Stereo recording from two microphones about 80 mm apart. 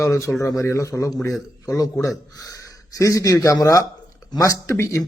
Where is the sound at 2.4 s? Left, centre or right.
Left.